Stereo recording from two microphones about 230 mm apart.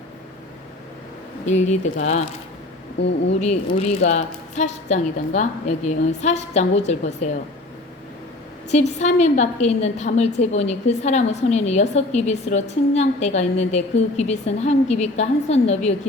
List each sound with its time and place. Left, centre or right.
1.5 s speech: left
3.0 s speech: left
3.4 s a woman's voice: left
8.7 s a woman's voice: left